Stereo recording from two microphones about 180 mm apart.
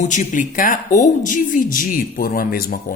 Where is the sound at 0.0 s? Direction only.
40° left (ahead or behind).